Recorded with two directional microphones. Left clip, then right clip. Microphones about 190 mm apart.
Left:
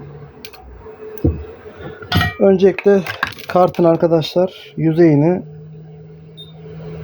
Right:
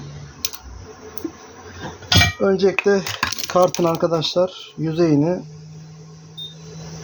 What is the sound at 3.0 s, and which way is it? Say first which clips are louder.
Computer keyboard: left 1 dB; 45° left (ahead or behind).